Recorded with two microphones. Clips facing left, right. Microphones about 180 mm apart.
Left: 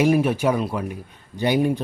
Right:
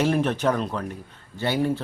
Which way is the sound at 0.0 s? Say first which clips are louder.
Left 4 dB; 10° left (ahead or behind).